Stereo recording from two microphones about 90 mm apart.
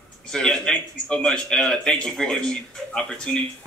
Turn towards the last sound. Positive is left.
turn(degrees=5)  # may be behind; listen again after turning